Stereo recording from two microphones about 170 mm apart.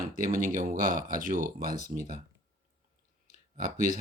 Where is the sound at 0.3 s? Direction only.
50° right (ahead or behind).